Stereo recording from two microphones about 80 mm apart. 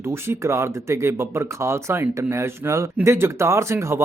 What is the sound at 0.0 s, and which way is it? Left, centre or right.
Speech, right.